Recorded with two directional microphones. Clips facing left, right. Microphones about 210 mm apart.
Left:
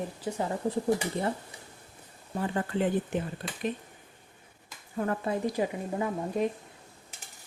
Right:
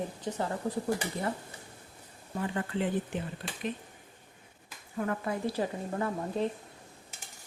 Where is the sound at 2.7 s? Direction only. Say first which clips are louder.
Left 4 dB; 45° left (ahead or behind).